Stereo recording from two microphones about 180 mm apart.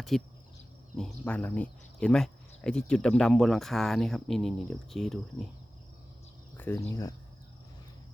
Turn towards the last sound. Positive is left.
turn(degrees=15)  # may be behind; listen again after turning